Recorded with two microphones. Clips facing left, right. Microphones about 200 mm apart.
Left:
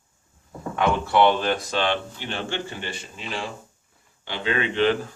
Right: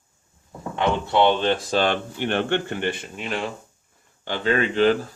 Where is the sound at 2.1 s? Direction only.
55° right (ahead or behind).